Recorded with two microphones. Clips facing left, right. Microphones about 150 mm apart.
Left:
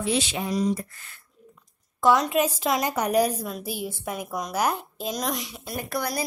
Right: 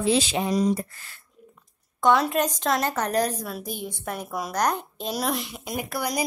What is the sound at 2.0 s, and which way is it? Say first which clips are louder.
A woman's voice: even; centre (ahead or behind).